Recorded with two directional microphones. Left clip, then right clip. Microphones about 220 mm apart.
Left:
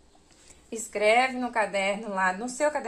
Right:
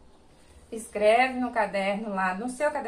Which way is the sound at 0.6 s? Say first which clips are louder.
Right 1 dB; 50° left (ahead or behind).